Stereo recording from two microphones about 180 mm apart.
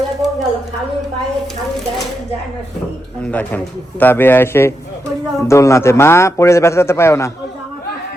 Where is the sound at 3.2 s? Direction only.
10° left (ahead or behind).